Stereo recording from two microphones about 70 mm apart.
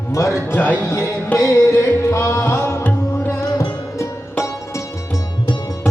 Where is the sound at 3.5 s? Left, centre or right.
Left.